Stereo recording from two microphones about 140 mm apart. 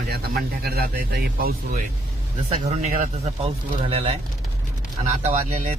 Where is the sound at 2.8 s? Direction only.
50° right (ahead or behind).